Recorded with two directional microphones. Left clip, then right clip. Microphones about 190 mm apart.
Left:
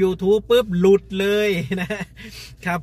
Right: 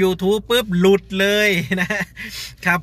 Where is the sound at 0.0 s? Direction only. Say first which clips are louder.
Even; centre (ahead or behind).